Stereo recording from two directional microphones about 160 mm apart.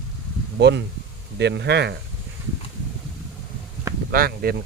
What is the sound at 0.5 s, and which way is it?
Speech, 90° right.